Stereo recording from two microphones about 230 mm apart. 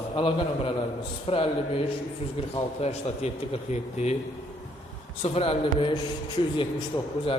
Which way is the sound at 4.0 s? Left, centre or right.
Left.